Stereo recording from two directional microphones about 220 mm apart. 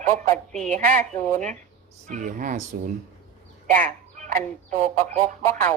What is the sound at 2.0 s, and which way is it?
Speech, 35° right (ahead or behind).